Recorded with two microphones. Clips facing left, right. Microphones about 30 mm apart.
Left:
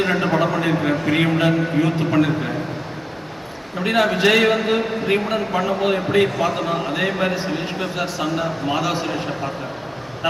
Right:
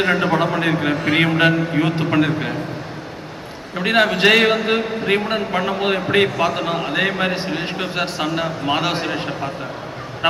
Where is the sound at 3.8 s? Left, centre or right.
Right.